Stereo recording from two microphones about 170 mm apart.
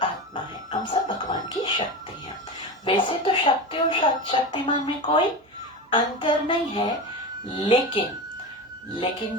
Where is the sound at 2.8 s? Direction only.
30° left (ahead or behind).